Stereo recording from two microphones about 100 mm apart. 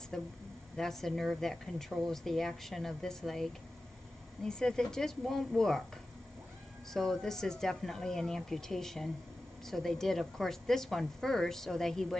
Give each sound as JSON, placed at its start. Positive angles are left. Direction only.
{"t": 0.1, "sound": "speech", "side_deg": 5}
{"t": 6.9, "sound": "speech", "side_deg": 5}